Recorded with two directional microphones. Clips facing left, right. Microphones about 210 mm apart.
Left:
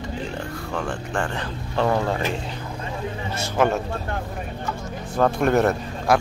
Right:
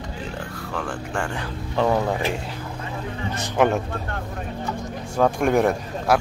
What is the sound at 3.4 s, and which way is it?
Speech, 15° right (ahead or behind).